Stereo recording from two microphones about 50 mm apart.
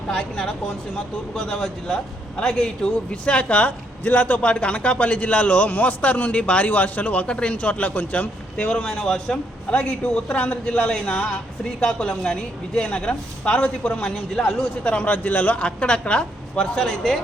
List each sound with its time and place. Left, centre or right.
0.1 s speech: centre
6.7 s speech: left
8.5 s speech: centre
14.3 s speech: centre
14.8 s speech: left; by 17.2 s centre